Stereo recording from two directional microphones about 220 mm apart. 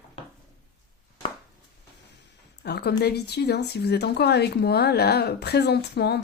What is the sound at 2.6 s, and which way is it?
A woman's voice, 50° left (ahead or behind).